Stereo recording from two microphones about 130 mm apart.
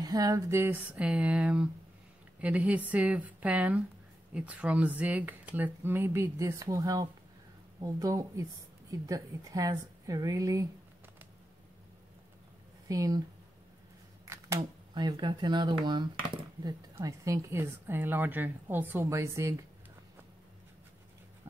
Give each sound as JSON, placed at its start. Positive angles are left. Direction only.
{"t": 0.0, "sound": "a woman's voice", "side_deg": -30}
{"t": 12.8, "sound": "speech", "side_deg": -25}
{"t": 14.2, "sound": "a sound", "side_deg": -25}
{"t": 15.0, "sound": "speech", "side_deg": -35}
{"t": 16.9, "sound": "a woman's voice", "side_deg": -25}